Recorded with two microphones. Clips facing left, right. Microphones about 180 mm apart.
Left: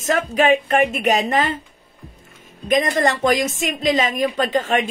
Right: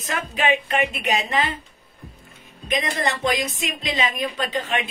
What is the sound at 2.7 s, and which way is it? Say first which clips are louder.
A woman's voice: left 7 dB; 45° left (ahead or behind).